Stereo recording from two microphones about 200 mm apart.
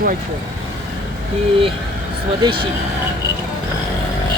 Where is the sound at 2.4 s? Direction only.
25° right (ahead or behind).